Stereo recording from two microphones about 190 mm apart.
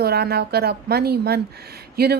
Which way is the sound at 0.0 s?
55° right (ahead or behind).